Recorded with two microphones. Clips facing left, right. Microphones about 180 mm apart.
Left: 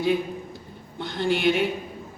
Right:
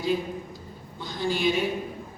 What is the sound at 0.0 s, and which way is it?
A man's voice, 65° left (ahead or behind).